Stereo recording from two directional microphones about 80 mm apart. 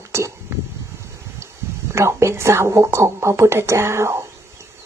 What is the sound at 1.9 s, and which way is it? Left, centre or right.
A woman's voice, right.